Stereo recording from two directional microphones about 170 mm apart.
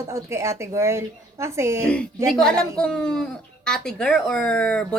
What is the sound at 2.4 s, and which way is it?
Speech, 5° left (ahead or behind).